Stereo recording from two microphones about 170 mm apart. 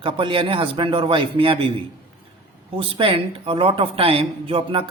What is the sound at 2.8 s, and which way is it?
A woman's voice, 30° right (ahead or behind).